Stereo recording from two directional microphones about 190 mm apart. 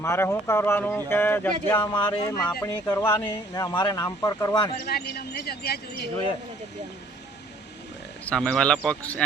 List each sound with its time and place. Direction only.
0.0 s speech: 15° left (ahead or behind)
1.8 s speech: 20° left (ahead or behind)
4.9 s speech: 55° left (ahead or behind)
8.2 s speech: 5° left (ahead or behind)